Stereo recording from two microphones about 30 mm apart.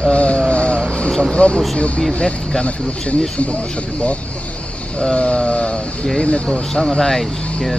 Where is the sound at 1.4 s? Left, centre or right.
Left.